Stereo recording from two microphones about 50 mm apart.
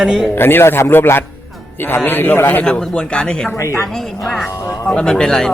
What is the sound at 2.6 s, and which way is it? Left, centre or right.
Speech, centre.